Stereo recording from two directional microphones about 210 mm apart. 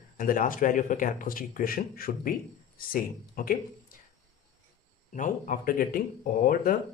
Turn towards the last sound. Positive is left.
turn(degrees=40)  # may be behind; listen again after turning